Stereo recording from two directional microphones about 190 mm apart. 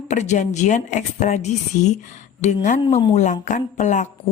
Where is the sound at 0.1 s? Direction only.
40° left (ahead or behind).